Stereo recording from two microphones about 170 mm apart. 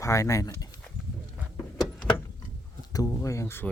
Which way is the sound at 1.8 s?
5° left (ahead or behind).